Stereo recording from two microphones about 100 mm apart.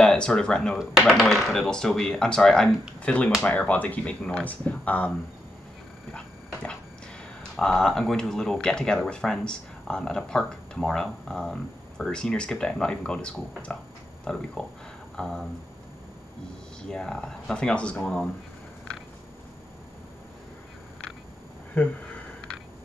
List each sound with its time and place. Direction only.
0.0 s speech: 10° left (ahead or behind)
6.1 s dog: 10° left (ahead or behind)
7.5 s speech: 5° left (ahead or behind)
16.9 s speech: 5° left (ahead or behind)
21.8 s speech: 15° left (ahead or behind)